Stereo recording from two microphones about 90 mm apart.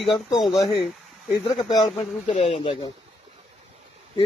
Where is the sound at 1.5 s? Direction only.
60° left (ahead or behind).